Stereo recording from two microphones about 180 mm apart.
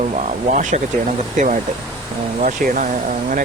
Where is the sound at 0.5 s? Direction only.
45° right (ahead or behind).